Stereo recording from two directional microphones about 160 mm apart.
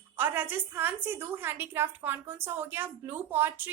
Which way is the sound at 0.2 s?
10° right (ahead or behind).